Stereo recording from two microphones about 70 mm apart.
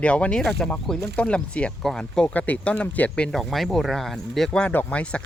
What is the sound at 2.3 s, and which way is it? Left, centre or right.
Speech, left.